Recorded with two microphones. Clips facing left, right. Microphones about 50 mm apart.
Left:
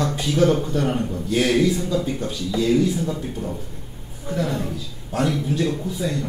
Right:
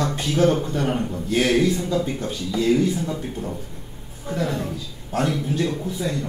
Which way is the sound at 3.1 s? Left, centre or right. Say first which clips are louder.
Left 1 dB; centre.